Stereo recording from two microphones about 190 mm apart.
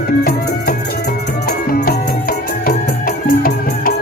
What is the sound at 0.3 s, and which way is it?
Music, 55° left (ahead or behind).